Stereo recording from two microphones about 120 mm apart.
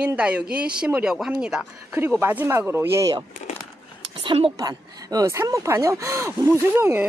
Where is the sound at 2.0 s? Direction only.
20° right (ahead or behind).